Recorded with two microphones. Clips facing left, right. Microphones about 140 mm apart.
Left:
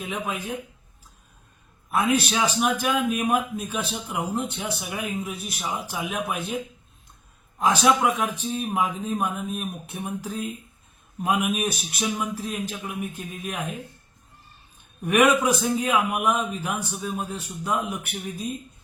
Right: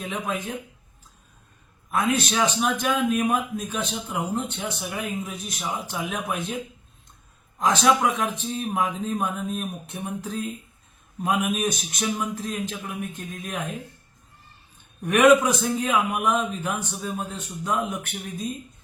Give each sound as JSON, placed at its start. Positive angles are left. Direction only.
{"t": 0.0, "sound": "a man's voice", "side_deg": 10}
{"t": 1.9, "sound": "a man's voice", "side_deg": 10}
{"t": 7.6, "sound": "a man's voice", "side_deg": 10}
{"t": 15.0, "sound": "a man's voice", "side_deg": 10}